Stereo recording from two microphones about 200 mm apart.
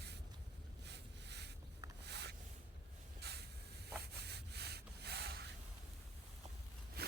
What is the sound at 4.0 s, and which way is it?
Rub, 55° right (ahead or behind).